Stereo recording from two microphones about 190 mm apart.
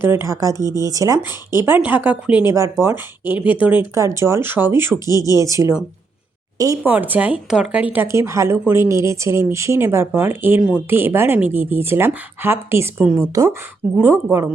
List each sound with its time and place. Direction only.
0.0 s speech: 15° right (ahead or behind)
5.1 s speech: 20° left (ahead or behind)
5.4 s speech: 15° right (ahead or behind)